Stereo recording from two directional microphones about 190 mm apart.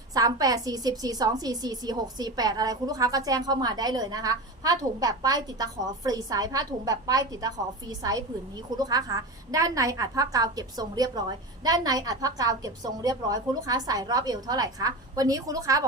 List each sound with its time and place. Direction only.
0.1 s a woman's voice: 20° right (ahead or behind)